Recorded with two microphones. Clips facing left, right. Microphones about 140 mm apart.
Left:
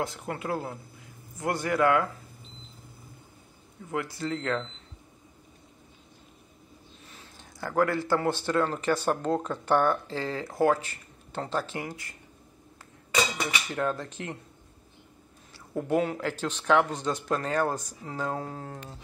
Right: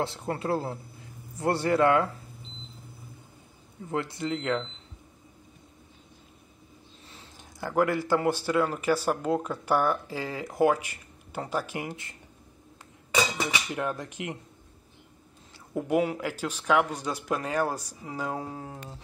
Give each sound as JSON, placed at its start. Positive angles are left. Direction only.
{"t": 0.0, "sound": "speech", "side_deg": -30}
{"t": 3.9, "sound": "speech", "side_deg": -25}
{"t": 7.2, "sound": "speech", "side_deg": -15}
{"t": 15.7, "sound": "speech", "side_deg": -15}